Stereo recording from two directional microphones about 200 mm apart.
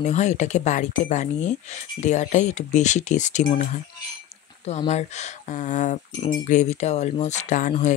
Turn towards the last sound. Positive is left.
turn(degrees=40)  # may be behind; listen again after turning